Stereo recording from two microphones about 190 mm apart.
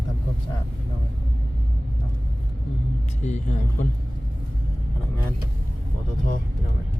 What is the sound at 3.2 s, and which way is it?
Speech, 40° left (ahead or behind).